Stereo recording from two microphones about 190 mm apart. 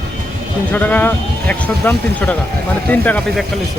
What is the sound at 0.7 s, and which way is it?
Speech, 10° left (ahead or behind).